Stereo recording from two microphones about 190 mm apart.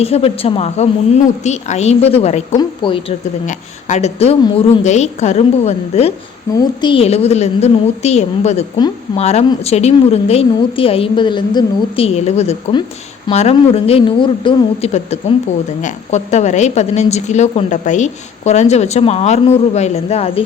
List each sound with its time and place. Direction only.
0.0 s a woman's voice: 30° left (ahead or behind)
3.4 s a woman's voice: 40° left (ahead or behind)